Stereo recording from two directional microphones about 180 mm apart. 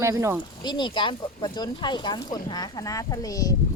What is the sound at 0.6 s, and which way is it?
Speech, 25° left (ahead or behind).